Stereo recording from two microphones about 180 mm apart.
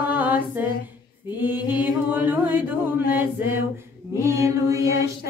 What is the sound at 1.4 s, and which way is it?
Chant, 10° right (ahead or behind).